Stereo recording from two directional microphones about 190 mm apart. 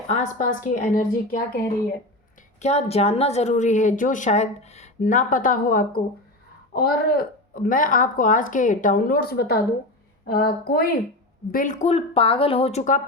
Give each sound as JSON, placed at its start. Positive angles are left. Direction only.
{"t": 0.1, "sound": "a woman's voice", "side_deg": 40}
{"t": 2.6, "sound": "a woman's voice", "side_deg": 35}
{"t": 11.5, "sound": "a woman's voice", "side_deg": 40}